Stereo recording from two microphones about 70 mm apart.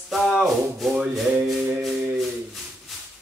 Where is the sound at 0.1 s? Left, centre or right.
Centre.